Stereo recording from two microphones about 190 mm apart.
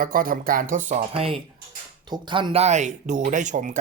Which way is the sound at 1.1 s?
30° right (ahead or behind).